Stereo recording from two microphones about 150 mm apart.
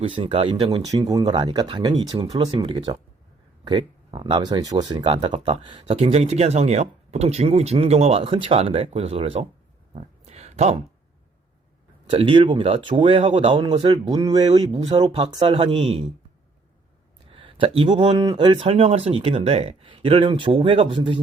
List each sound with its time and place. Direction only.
0.0 s speech: 35° right (ahead or behind)
0.9 s speech: 25° right (ahead or behind)
5.0 s speech: 40° right (ahead or behind)
9.9 s a sound: 45° right (ahead or behind)
12.1 s speech: 35° right (ahead or behind)
14.6 s speech: 45° right (ahead or behind)
15.1 s speech: 35° right (ahead or behind)
17.2 s a sound: 35° right (ahead or behind)
18.2 s speech: 30° right (ahead or behind)